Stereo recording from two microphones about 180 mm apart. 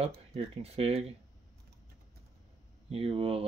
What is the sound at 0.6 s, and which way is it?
Speech, 35° right (ahead or behind).